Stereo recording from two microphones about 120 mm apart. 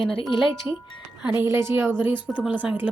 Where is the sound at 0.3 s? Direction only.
Centre (ahead or behind).